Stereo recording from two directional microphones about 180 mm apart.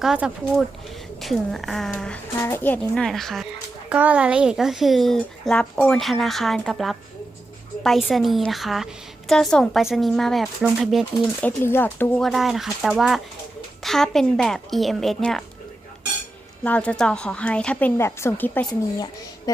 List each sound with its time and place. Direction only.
0.0 s a woman's voice: 5° right (ahead or behind)
11.4 s a woman's voice: 10° left (ahead or behind)
16.6 s a woman's voice: 5° left (ahead or behind)
18.7 s speech: 20° left (ahead or behind)